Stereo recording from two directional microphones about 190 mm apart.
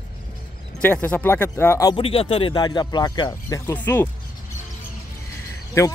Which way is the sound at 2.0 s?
30° left (ahead or behind).